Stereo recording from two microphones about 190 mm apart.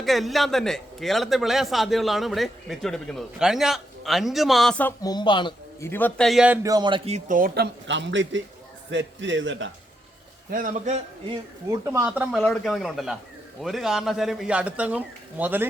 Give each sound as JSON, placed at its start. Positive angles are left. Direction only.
{"t": 0.0, "sound": "a man's voice", "side_deg": 0}
{"t": 5.0, "sound": "a man's voice", "side_deg": 25}
{"t": 5.9, "sound": "a man's voice", "side_deg": 10}
{"t": 6.6, "sound": "a man's voice", "side_deg": -20}
{"t": 7.3, "sound": "speech", "side_deg": -55}
{"t": 10.5, "sound": "a man's voice", "side_deg": -45}
{"t": 11.7, "sound": "a man's voice", "side_deg": -15}